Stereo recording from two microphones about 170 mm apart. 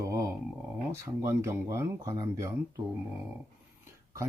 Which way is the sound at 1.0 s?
15° right (ahead or behind).